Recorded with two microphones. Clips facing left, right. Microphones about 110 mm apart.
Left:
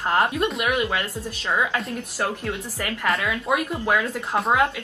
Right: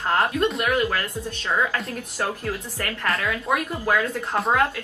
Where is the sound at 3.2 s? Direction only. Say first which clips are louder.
Left 1 dB; 15° left (ahead or behind).